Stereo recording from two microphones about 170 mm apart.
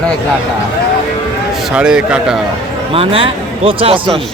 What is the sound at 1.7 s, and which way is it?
Speech, 5° right (ahead or behind).